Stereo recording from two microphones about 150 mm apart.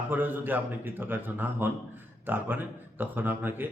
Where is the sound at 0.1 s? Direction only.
10° right (ahead or behind).